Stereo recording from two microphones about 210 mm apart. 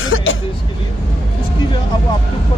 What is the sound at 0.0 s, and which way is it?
Vehicle, 70° left (ahead or behind).